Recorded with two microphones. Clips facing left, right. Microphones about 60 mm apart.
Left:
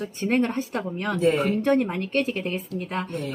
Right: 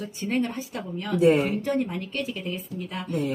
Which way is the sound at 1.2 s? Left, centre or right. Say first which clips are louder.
Right 2 dB; centre.